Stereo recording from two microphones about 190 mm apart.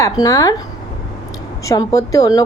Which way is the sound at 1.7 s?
15° left (ahead or behind).